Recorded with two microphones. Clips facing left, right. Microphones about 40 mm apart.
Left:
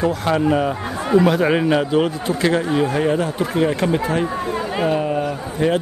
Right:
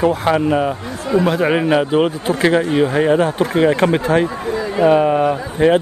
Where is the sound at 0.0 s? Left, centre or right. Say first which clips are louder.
Right 3 dB; centre.